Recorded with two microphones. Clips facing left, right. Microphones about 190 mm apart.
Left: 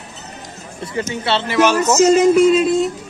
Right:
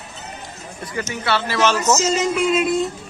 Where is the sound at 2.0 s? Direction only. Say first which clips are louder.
Left 9 dB; 55° left (ahead or behind).